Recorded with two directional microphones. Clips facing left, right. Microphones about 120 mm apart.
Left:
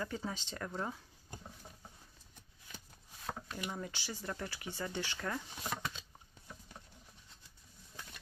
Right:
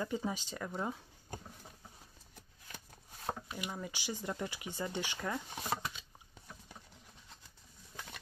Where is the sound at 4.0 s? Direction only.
20° right (ahead or behind).